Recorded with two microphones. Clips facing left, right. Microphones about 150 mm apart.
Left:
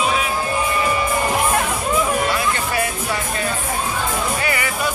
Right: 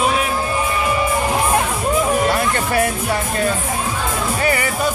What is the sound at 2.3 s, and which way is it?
Music, 50° right (ahead or behind).